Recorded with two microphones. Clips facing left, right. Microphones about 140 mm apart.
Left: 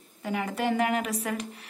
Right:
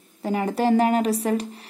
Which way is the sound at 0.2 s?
35° right (ahead or behind).